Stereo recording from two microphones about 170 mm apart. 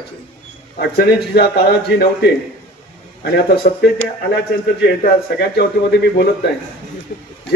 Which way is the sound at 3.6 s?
55° left (ahead or behind).